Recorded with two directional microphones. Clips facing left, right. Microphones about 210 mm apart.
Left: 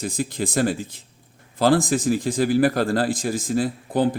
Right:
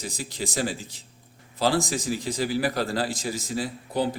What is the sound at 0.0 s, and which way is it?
A man's voice, 50° left (ahead or behind).